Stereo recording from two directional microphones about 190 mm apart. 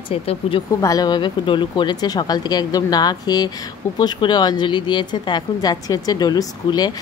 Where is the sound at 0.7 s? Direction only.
20° left (ahead or behind).